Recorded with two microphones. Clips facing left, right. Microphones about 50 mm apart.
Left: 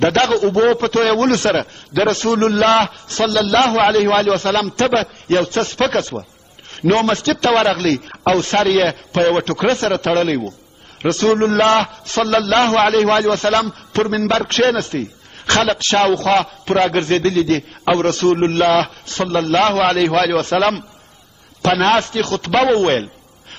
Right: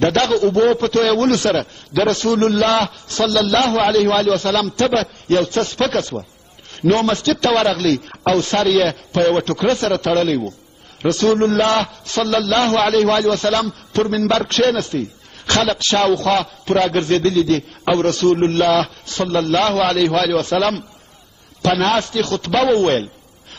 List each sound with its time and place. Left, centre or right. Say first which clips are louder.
0.0 s a man's voice: left 1 dB; left